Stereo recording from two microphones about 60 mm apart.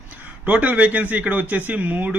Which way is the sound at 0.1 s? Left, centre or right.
Right.